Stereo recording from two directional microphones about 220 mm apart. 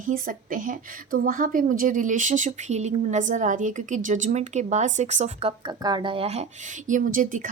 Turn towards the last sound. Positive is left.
turn(degrees=-40)  # may be behind; listen again after turning